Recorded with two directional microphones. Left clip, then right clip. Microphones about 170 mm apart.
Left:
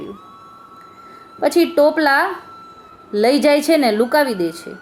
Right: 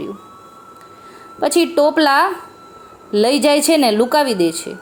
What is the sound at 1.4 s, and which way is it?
A woman's voice, 15° right (ahead or behind).